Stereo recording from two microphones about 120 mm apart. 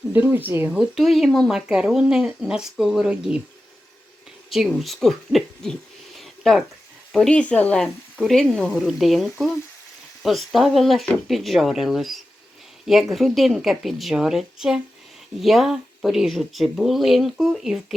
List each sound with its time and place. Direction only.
0.1 s speech: 15° right (ahead or behind)
0.8 s speech: centre (ahead or behind)
4.4 s speech: centre (ahead or behind)
6.1 s a sound: centre (ahead or behind)
7.1 s speech: 5° left (ahead or behind)